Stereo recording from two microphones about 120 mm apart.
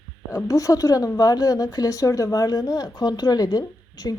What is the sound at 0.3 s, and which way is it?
A woman's voice, 30° left (ahead or behind).